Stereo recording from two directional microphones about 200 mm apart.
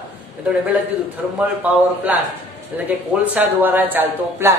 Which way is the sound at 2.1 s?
5° right (ahead or behind).